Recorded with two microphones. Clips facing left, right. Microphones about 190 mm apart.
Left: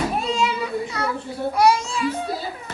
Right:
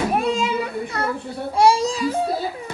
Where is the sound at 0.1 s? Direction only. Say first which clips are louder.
Right 2 dB; 55° right (ahead or behind).